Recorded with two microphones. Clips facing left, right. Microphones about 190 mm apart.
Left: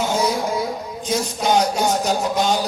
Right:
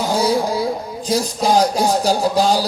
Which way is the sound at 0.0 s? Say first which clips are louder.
Right 3 dB; 35° right (ahead or behind).